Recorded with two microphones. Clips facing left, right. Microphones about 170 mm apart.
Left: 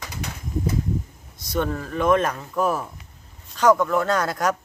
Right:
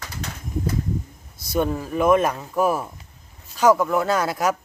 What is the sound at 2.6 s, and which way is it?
Speech, 10° right (ahead or behind).